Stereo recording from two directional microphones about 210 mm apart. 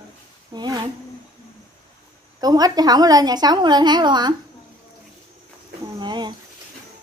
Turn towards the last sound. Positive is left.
turn(degrees=-20)  # may be behind; listen again after turning